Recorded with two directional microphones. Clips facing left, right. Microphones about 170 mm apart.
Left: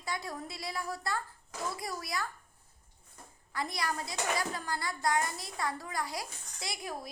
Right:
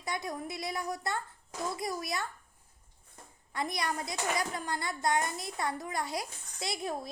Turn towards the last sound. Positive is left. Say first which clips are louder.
# right 4 dB
turn(degrees=-25)  # may be behind; listen again after turning